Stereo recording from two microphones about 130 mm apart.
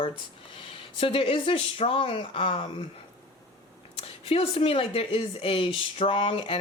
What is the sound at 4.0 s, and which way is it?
Speech, 45° left (ahead or behind).